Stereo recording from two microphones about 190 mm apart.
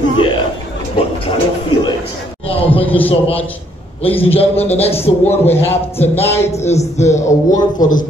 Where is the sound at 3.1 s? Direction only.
30° left (ahead or behind).